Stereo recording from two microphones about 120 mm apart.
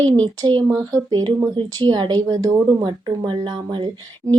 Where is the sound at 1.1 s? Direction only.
35° right (ahead or behind).